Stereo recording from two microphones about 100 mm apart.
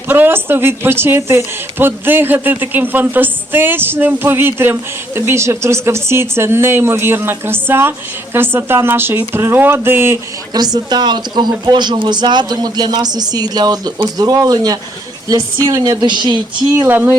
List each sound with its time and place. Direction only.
0.1 s speech: 20° right (ahead or behind)
10.5 s speech: 40° right (ahead or behind)
16.7 s speech: 20° right (ahead or behind)